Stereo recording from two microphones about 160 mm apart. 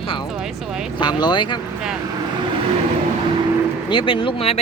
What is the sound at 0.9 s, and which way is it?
Speech, 30° left (ahead or behind).